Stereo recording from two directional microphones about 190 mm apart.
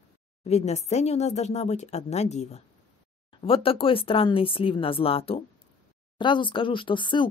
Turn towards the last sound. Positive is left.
turn(degrees=25)  # may be behind; listen again after turning